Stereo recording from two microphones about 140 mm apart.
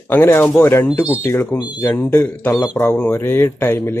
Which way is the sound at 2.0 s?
15° left (ahead or behind).